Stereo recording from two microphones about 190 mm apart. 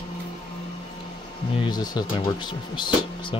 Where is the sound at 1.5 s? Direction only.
20° left (ahead or behind).